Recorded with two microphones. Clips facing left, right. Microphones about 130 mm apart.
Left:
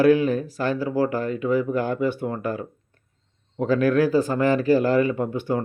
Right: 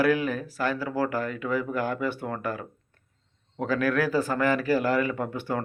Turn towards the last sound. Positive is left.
turn(degrees=20)  # may be behind; listen again after turning